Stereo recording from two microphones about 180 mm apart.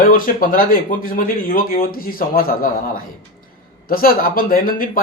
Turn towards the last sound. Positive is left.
turn(degrees=55)  # may be behind; listen again after turning